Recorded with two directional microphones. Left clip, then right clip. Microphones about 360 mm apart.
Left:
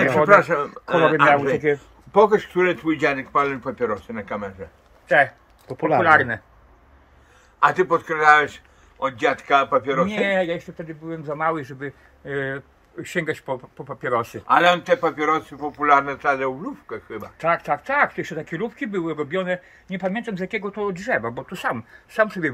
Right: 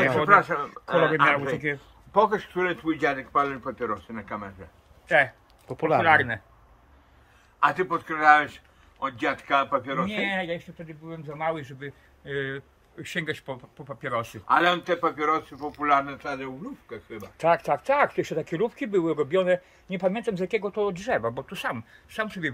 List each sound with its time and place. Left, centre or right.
0.3 s speech: left
1.6 s speech: centre
2.1 s speech: left
5.0 s speech: centre
7.6 s speech: left
10.2 s speech: centre
14.3 s speech: left
16.3 s speech: centre
17.4 s speech: right; by 22.5 s centre